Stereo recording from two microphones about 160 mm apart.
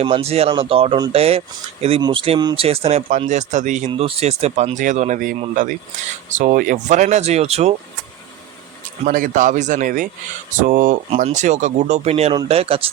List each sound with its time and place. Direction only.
0.0 s speech: 35° right (ahead or behind)
2.0 s speech: 25° right (ahead or behind)
2.6 s speech: 40° right (ahead or behind)
3.8 s speech: 35° right (ahead or behind)
6.3 s speech: 55° right (ahead or behind)
9.0 s speech: 55° right (ahead or behind)
11.1 s speech: 45° right (ahead or behind)